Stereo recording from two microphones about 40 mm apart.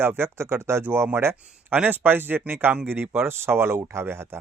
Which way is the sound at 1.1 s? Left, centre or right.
Right.